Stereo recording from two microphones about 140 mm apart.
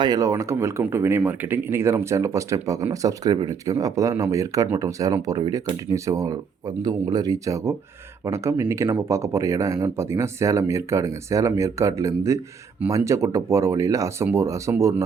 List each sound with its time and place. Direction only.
0.0 s speech: 25° right (ahead or behind)